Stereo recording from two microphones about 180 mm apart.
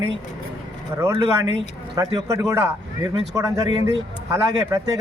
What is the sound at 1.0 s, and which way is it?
A man's voice, 25° right (ahead or behind).